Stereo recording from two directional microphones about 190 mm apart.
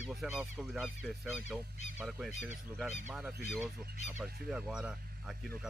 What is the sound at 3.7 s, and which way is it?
Speech, 55° right (ahead or behind).